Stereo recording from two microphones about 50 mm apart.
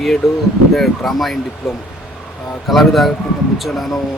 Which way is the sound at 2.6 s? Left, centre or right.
Centre.